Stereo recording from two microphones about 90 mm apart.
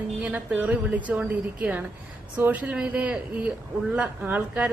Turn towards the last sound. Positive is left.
turn(degrees=-15)  # may be behind; listen again after turning